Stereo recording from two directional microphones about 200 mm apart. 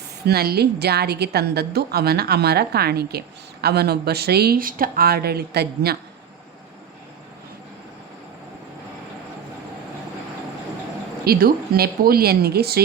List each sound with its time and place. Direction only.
0.3 s a woman's voice: 50° right (ahead or behind)
11.3 s a woman's voice: 50° right (ahead or behind)